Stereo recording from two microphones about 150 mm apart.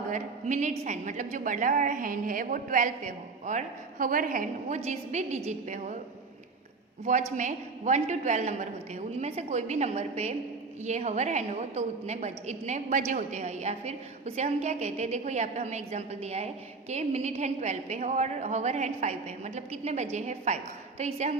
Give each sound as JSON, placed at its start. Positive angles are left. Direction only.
{"t": 0.1, "sound": "a woman's voice", "side_deg": -55}
{"t": 4.8, "sound": "a woman's voice", "side_deg": -50}
{"t": 7.0, "sound": "a woman's voice", "side_deg": -45}